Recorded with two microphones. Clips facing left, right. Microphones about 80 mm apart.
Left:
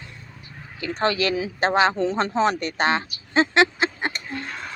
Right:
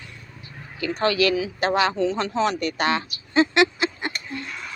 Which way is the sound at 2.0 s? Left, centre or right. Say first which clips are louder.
Left 1 dB; left.